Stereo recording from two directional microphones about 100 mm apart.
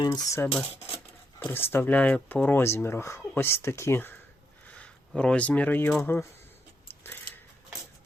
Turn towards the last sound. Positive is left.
turn(degrees=20)  # may be behind; listen again after turning